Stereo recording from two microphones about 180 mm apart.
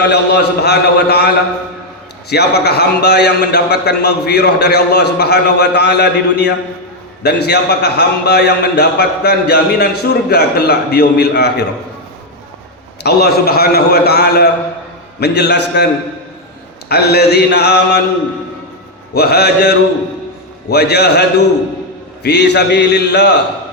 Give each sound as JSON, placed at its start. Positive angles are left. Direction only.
{"t": 0.0, "sound": "a man's voice", "side_deg": 65}
{"t": 2.3, "sound": "a man's voice", "side_deg": 65}
{"t": 13.0, "sound": "a man's voice", "side_deg": 65}
{"t": 16.9, "sound": "a man's voice", "side_deg": 65}
{"t": 19.1, "sound": "a man's voice", "side_deg": 65}